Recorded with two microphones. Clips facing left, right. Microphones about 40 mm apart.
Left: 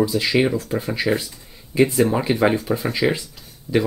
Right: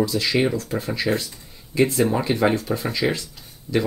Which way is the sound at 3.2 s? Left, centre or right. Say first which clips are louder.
Even; centre.